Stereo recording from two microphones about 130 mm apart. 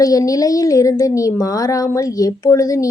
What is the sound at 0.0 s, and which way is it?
A woman's voice, 25° left (ahead or behind).